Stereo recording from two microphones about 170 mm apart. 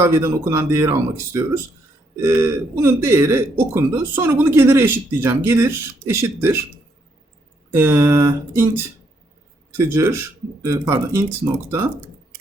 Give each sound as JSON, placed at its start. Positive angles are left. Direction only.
{"t": 0.0, "sound": "speech", "side_deg": -15}
{"t": 7.7, "sound": "speech", "side_deg": -15}